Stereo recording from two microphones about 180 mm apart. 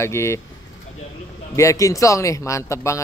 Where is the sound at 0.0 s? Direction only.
15° left (ahead or behind).